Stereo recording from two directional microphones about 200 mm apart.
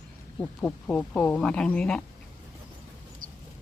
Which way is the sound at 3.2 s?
45° right (ahead or behind).